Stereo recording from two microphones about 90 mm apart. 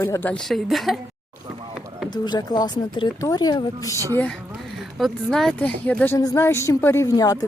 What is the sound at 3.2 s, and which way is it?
Speech, 45° left (ahead or behind).